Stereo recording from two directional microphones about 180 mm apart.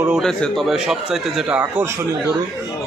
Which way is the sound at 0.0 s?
Centre (ahead or behind).